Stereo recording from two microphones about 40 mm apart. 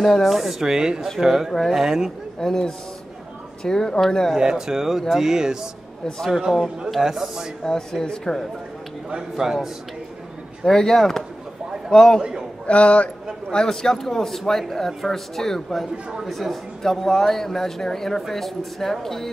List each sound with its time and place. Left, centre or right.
0.0 s speech: centre
2.4 s speech: centre
4.4 s speech: centre
7.6 s speech: centre
9.1 s speech: centre
10.6 s speech: centre
12.2 s a man's voice: centre
12.6 s a man's voice: left
13.5 s speech: centre